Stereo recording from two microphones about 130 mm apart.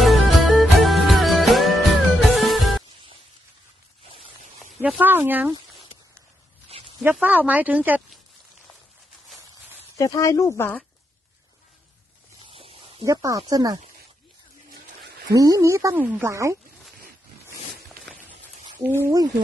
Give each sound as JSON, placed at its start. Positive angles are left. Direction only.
{"t": 0.0, "sound": "music", "side_deg": 0}
{"t": 4.0, "sound": "a sound", "side_deg": -45}
{"t": 4.8, "sound": "speech", "side_deg": -10}
{"t": 7.0, "sound": "speech", "side_deg": -10}
{"t": 9.9, "sound": "speech", "side_deg": 25}
{"t": 12.4, "sound": "a sound", "side_deg": -45}
{"t": 13.0, "sound": "speech", "side_deg": -25}
{"t": 15.3, "sound": "speech", "side_deg": -25}
{"t": 18.9, "sound": "speech", "side_deg": -20}